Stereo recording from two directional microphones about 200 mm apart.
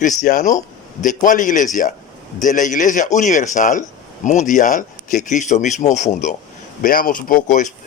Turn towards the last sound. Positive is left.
turn(degrees=40)  # may be behind; listen again after turning